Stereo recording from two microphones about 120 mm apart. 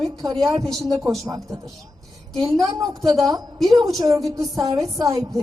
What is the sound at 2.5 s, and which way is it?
Speech, 30° right (ahead or behind).